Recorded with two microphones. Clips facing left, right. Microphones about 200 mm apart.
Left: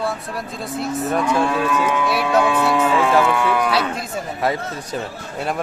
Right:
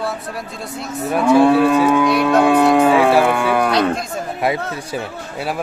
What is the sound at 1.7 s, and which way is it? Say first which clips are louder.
Speech: right 6 dB; 35° right (ahead or behind).